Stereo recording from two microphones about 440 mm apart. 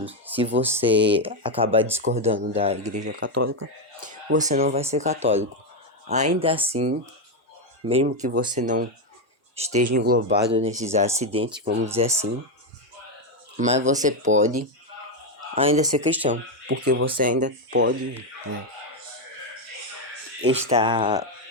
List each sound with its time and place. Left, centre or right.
0.0 s speech: centre; by 11.8 s right
11.9 s speech: centre
13.6 s speech: centre
15.6 s speech: centre
20.4 s speech: centre